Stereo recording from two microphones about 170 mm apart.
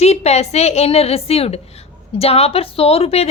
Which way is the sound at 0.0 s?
40° left (ahead or behind).